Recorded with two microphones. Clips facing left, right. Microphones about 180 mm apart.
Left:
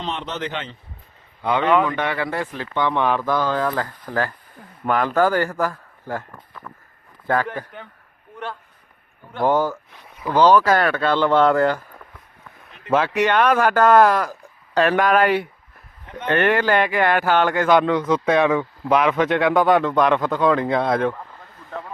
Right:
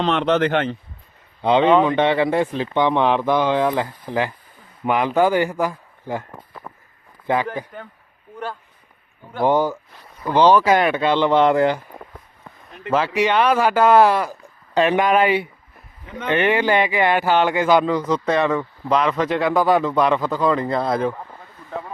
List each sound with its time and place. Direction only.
0.0 s speech: 70° right (ahead or behind)
1.4 s speech: 25° right (ahead or behind)
6.3 s a sound: 30° right (ahead or behind)
7.5 s speech: 5° right (ahead or behind)
9.3 s speech: 10° right (ahead or behind)
12.9 s speech: centre (ahead or behind)